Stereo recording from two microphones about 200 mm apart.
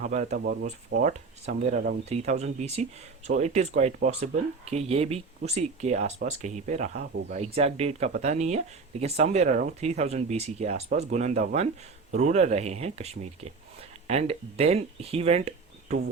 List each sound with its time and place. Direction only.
0.0 s speech: 35° right (ahead or behind)
0.3 s speech: 50° right (ahead or behind)
0.9 s speech: 40° right (ahead or behind)